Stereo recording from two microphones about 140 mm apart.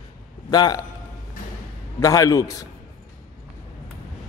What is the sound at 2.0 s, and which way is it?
Speech, 25° left (ahead or behind).